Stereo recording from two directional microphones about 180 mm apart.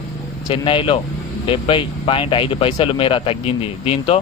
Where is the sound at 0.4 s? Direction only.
30° left (ahead or behind).